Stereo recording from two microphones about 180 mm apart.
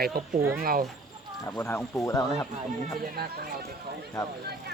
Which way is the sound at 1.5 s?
15° left (ahead or behind).